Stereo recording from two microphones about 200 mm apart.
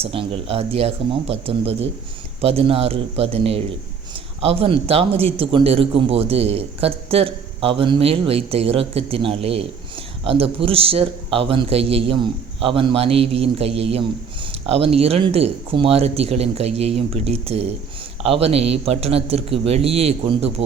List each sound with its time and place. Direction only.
0.0 s a man's voice: 25° right (ahead or behind)